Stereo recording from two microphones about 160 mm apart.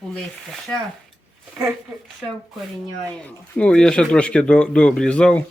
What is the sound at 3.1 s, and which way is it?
Speech, 5° left (ahead or behind).